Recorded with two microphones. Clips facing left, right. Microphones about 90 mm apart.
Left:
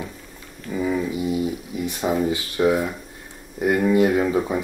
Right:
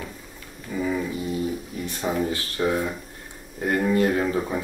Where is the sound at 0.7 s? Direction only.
10° left (ahead or behind).